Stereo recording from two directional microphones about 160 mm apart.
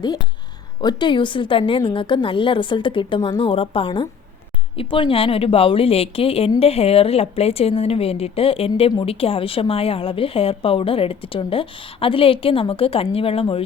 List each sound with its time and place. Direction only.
0.0 s a woman's voice: 25° left (ahead or behind)